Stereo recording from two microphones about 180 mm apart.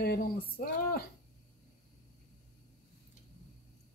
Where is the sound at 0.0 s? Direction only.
55° left (ahead or behind).